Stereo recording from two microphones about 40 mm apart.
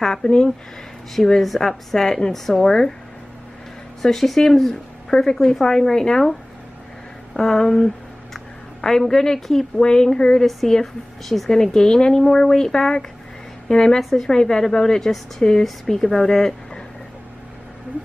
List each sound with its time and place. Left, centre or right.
0.0 s a woman's voice: centre
1.1 s speech: centre
2.6 s speech: centre
4.0 s speech: centre
7.3 s speech: centre
9.8 s a woman's voice: left
10.7 s speech: centre
11.5 s a woman's voice: centre
15.6 s speech: centre